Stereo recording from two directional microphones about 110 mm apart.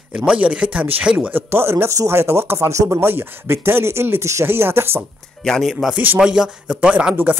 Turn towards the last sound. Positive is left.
turn(degrees=-10)  # may be behind; listen again after turning